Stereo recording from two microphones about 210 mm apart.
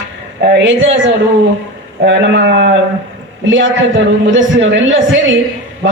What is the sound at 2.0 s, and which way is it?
Speech, 55° right (ahead or behind).